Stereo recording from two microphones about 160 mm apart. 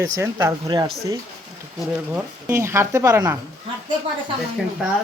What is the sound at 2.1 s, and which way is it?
Speech, 15° right (ahead or behind).